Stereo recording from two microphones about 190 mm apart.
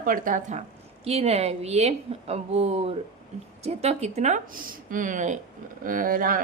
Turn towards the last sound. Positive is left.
turn(degrees=-50)  # may be behind; listen again after turning